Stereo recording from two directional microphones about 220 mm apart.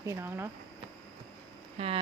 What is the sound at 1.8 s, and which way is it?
Speech, 30° right (ahead or behind).